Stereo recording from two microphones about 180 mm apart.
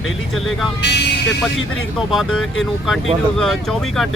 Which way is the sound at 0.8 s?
70° left (ahead or behind).